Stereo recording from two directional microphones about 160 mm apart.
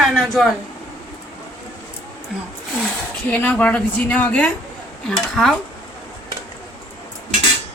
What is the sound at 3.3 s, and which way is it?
A woman's voice, 10° left (ahead or behind).